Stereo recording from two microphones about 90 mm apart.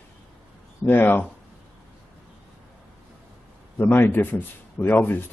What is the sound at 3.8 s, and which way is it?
Speech, 25° left (ahead or behind).